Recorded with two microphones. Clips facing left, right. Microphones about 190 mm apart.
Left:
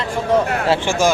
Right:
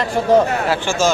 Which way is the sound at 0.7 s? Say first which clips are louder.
Left 3 dB; 15° left (ahead or behind).